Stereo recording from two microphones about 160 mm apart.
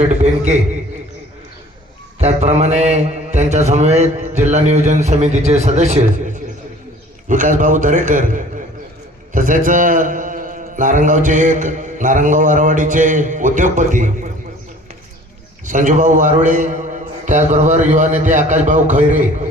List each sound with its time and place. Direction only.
0.0 s mantra: 45° right (ahead or behind)
2.1 s mantra: 45° right (ahead or behind)
7.3 s a man's voice: 55° right (ahead or behind)
9.3 s mantra: 55° right (ahead or behind)
15.6 s mantra: 55° right (ahead or behind)